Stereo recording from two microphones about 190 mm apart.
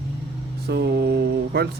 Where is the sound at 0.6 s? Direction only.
60° right (ahead or behind).